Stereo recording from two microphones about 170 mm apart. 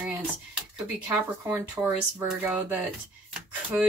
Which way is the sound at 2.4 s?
10° right (ahead or behind).